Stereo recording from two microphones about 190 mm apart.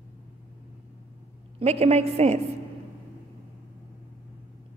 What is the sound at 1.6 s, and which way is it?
Speech, 35° right (ahead or behind).